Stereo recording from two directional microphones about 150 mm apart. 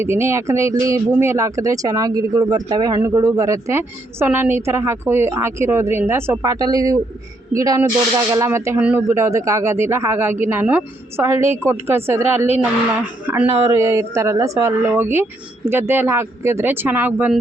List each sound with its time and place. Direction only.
0.0 s speech: 15° right (ahead or behind)